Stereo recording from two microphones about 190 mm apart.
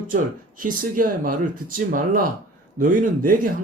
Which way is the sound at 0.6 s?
45° right (ahead or behind).